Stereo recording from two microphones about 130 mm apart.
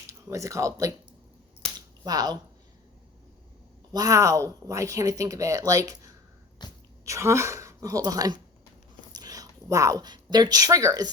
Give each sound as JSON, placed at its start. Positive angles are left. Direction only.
{"t": 0.3, "sound": "speech", "side_deg": -25}
{"t": 1.6, "sound": "finger snapping", "side_deg": 5}
{"t": 2.0, "sound": "speech", "side_deg": -30}
{"t": 3.9, "sound": "speech", "side_deg": -25}
{"t": 6.6, "sound": "a sound", "side_deg": 35}
{"t": 7.0, "sound": "a woman's voice", "side_deg": -20}